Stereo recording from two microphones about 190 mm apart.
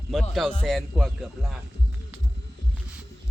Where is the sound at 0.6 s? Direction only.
Centre (ahead or behind).